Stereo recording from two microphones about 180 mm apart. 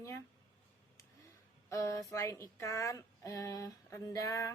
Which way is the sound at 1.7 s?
15° left (ahead or behind).